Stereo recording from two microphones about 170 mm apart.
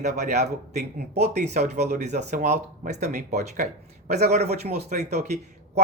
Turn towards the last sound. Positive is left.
turn(degrees=-40)  # may be behind; listen again after turning